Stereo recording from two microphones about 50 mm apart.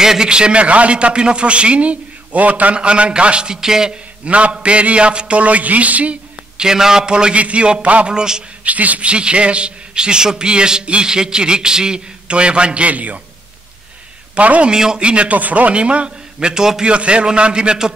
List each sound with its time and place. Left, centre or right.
0.0 s a man's voice: centre
4.2 s a man's voice: right
6.6 s a man's voice: centre
8.1 s a man's voice: centre
8.6 s a man's voice: right
14.3 s a man's voice: right
14.7 s a man's voice: centre